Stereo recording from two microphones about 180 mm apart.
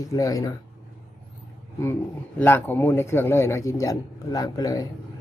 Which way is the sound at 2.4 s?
10° left (ahead or behind).